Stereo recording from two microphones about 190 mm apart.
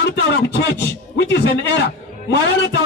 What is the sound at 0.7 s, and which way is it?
Speech, 60° left (ahead or behind).